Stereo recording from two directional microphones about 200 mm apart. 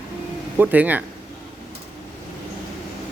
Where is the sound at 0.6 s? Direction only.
10° right (ahead or behind).